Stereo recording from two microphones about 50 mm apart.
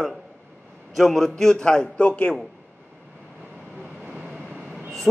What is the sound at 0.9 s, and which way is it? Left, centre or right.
Speech, centre.